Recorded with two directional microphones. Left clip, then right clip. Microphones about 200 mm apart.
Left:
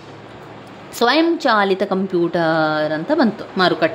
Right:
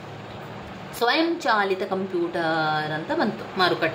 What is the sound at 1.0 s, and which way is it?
Speech, 45° left (ahead or behind).